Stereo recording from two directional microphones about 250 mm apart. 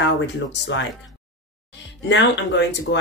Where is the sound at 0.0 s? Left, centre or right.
Left.